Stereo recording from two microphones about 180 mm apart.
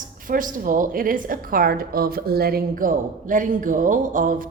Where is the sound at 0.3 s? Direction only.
50° right (ahead or behind).